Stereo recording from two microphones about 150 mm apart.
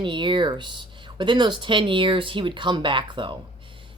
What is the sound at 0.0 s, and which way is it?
Speech, 30° right (ahead or behind).